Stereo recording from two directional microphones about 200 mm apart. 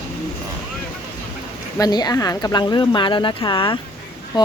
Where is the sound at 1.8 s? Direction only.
20° left (ahead or behind).